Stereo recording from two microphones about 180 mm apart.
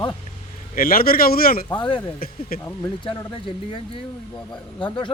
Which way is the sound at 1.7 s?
25° left (ahead or behind).